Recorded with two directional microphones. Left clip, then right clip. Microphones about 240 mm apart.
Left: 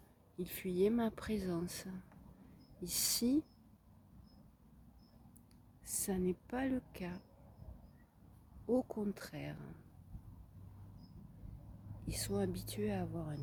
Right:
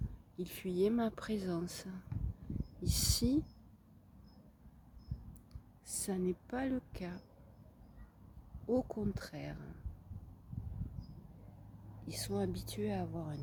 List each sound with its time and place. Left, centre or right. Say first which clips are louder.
0.3 s speech: even; centre
5.8 s speech: even; centre
8.6 s speech: right 1 dB; centre
12.0 s speech: even; centre